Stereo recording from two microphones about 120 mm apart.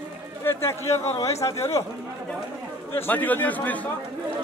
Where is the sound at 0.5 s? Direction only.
20° left (ahead or behind).